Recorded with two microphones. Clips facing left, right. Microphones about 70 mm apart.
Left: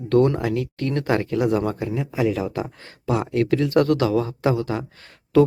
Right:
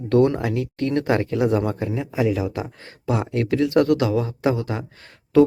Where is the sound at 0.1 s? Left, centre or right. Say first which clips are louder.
Even; right.